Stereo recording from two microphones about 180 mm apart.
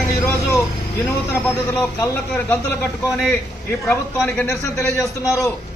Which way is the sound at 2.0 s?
10° left (ahead or behind).